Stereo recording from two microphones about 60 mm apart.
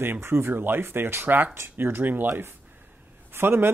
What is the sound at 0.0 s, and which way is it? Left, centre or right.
Speech, right.